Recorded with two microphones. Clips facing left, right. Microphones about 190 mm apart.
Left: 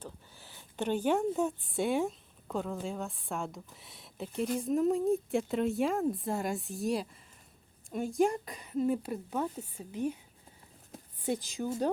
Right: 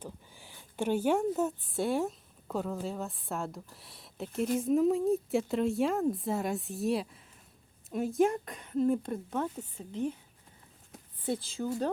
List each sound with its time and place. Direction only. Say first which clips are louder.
0.0 s a woman's voice: right 2 dB; 15° right (ahead or behind); by 10.2 s 10° left (ahead or behind)
11.3 s a woman's voice: even; 15° left (ahead or behind)